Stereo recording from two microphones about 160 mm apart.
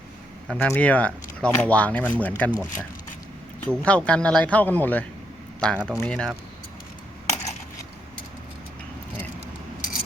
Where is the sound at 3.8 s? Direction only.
5° left (ahead or behind).